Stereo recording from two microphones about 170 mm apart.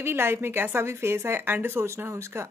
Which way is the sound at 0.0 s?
15° right (ahead or behind).